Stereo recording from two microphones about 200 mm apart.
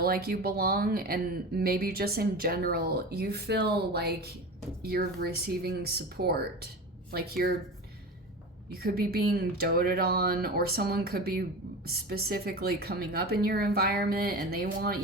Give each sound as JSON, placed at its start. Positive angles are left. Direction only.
{"t": 0.0, "sound": "speech", "side_deg": -50}
{"t": 8.8, "sound": "speech", "side_deg": -50}